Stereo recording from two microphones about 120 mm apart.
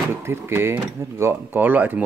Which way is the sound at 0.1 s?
20° right (ahead or behind).